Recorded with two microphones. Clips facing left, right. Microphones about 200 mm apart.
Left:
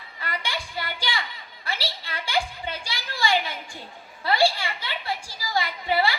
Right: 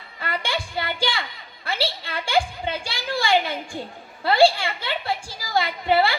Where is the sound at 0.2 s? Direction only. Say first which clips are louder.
Right 5 dB; 55° right (ahead or behind).